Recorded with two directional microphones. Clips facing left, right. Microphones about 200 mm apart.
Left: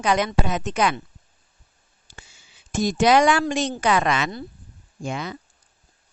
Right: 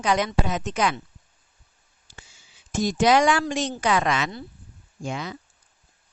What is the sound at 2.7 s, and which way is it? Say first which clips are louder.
A woman's voice: left 2 dB; 60° left (ahead or behind).